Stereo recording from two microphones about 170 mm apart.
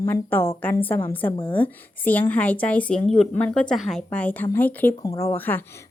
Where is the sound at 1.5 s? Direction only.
10° left (ahead or behind).